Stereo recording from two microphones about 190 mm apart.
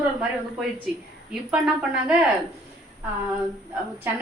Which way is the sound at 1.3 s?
5° right (ahead or behind).